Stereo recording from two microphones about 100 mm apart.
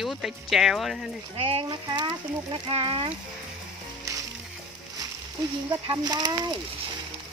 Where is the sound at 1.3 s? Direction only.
75° right (ahead or behind).